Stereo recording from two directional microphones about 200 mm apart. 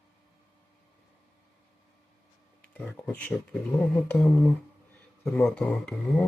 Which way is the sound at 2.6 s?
5° left (ahead or behind).